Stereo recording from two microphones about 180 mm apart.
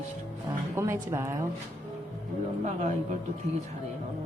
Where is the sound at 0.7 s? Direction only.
15° right (ahead or behind).